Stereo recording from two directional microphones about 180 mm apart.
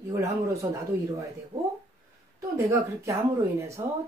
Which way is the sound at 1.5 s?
20° right (ahead or behind).